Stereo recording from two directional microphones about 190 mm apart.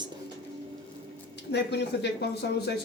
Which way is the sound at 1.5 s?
65° left (ahead or behind).